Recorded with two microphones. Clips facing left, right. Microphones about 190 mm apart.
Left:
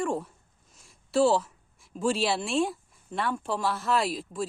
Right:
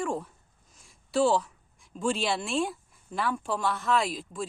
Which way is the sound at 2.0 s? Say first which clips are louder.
Left 2 dB; centre (ahead or behind).